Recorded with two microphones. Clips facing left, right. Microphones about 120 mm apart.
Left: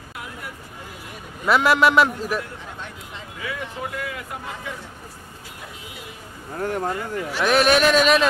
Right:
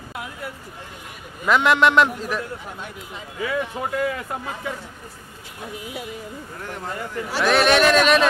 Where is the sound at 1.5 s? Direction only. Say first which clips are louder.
Even; 5° left (ahead or behind).